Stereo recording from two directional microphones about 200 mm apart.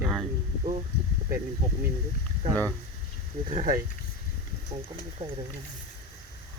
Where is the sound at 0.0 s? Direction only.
Centre (ahead or behind).